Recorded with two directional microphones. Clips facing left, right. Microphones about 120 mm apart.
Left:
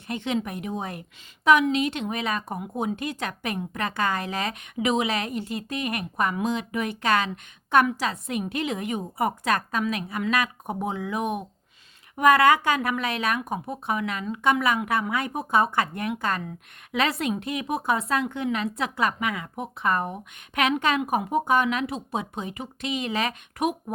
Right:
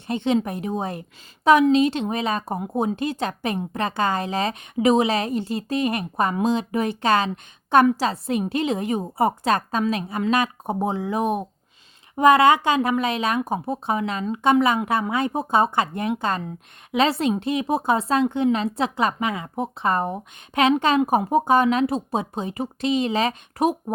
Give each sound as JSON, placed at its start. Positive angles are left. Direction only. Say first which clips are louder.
{"t": 0.1, "sound": "speech", "louder": "right 6 dB", "side_deg": -30}